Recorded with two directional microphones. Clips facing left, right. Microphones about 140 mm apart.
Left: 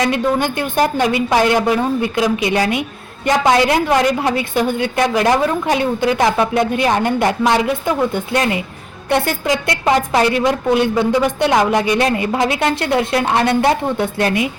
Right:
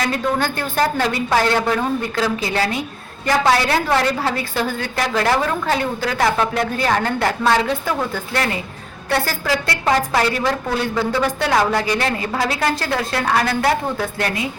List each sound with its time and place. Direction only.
0.3 s a woman's voice: 15° left (ahead or behind)